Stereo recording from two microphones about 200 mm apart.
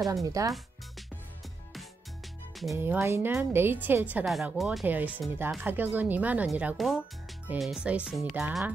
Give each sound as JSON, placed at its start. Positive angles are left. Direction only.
{"t": 0.0, "sound": "speech", "side_deg": -15}
{"t": 2.7, "sound": "speech", "side_deg": -10}